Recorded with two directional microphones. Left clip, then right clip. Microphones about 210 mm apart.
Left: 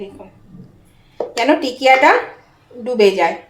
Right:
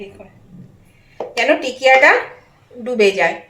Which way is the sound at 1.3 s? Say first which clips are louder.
Even; 25° left (ahead or behind).